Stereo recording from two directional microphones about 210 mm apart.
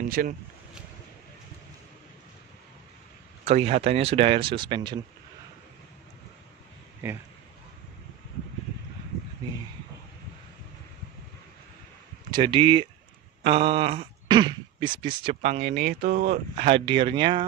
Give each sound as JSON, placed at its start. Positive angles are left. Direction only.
{"t": 0.2, "sound": "speech", "side_deg": -45}
{"t": 3.4, "sound": "speech", "side_deg": -30}
{"t": 7.0, "sound": "speech", "side_deg": -10}
{"t": 12.3, "sound": "speech", "side_deg": -20}
{"t": 16.6, "sound": "speech", "side_deg": -25}